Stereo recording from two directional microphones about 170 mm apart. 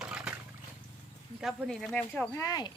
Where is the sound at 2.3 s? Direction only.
20° left (ahead or behind).